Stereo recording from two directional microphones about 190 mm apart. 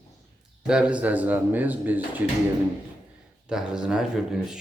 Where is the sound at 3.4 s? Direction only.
5° right (ahead or behind).